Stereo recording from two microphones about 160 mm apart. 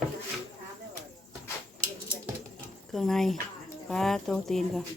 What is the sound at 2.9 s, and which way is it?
Speech, centre (ahead or behind).